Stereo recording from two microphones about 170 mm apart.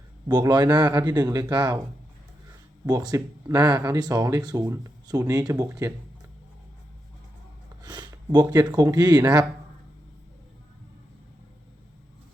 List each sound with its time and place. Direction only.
0.3 s speech: 25° right (ahead or behind)
2.8 s speech: 20° right (ahead or behind)
7.8 s speech: 25° right (ahead or behind)